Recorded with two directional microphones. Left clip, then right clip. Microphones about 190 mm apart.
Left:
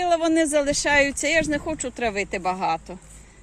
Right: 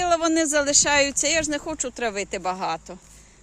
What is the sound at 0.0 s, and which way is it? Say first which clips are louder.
Speech: left 1 dB; 30° right (ahead or behind).